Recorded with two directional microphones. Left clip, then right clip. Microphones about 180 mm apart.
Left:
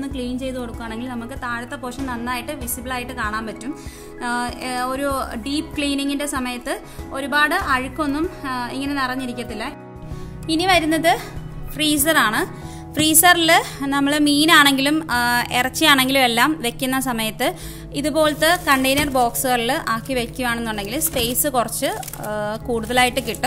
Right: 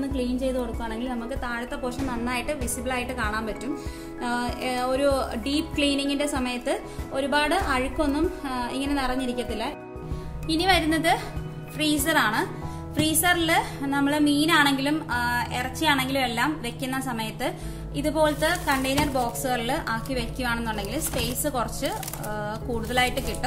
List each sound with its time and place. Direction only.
0.1 s music: 35° left (ahead or behind)
12.9 s a woman's voice: 45° left (ahead or behind)